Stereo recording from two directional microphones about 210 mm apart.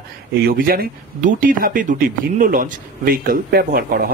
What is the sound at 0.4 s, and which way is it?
Speech, 45° right (ahead or behind).